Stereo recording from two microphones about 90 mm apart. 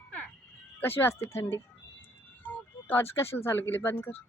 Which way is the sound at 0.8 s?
25° left (ahead or behind).